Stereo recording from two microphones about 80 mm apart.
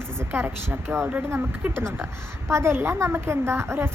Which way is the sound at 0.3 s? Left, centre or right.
Right.